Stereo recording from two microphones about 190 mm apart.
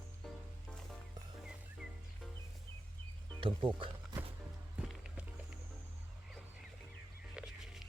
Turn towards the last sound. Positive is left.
turn(degrees=-5)  # may be behind; listen again after turning